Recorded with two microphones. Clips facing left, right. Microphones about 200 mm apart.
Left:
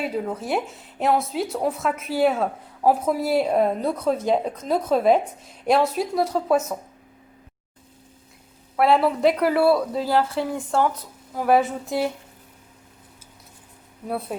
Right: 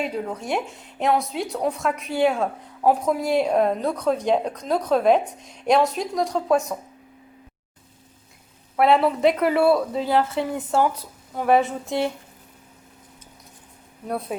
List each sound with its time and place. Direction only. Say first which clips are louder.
0.0 s speech: left 1 dB; 5° left (ahead or behind)
8.7 s speech: right 1 dB; centre (ahead or behind)
14.1 s speech: even; centre (ahead or behind)